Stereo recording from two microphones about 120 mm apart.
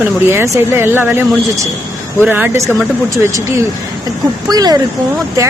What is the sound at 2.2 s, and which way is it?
Speech, 15° right (ahead or behind).